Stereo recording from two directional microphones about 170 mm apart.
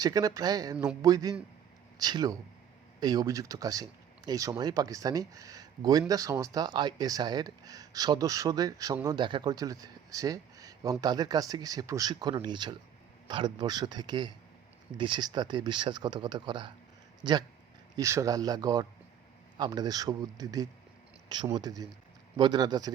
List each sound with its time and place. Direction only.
0.0 s speech: 20° right (ahead or behind)